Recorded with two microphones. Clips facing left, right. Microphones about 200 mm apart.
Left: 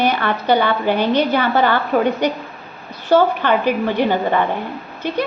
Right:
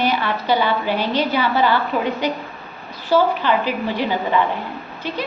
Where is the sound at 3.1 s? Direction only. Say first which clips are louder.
Left 2 dB; 60° left (ahead or behind).